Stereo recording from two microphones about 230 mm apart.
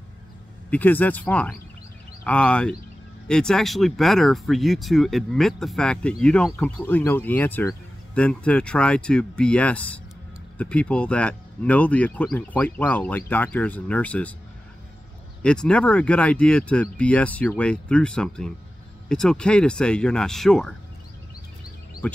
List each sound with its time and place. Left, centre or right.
0.7 s speech: centre
15.4 s speech: centre
22.0 s speech: centre